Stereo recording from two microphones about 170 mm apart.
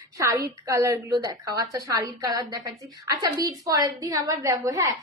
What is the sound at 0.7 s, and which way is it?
A woman's voice, 20° right (ahead or behind).